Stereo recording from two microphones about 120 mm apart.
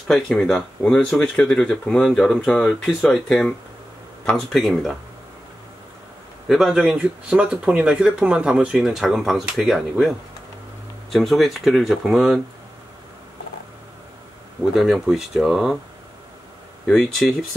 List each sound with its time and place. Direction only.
0.1 s speech: 5° left (ahead or behind)
6.5 s speech: 5° right (ahead or behind)
14.7 s speech: 5° right (ahead or behind)
16.8 s speech: 5° left (ahead or behind)